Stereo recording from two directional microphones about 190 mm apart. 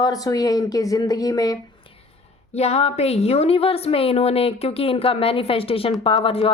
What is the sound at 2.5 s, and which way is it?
A woman's voice, 35° left (ahead or behind).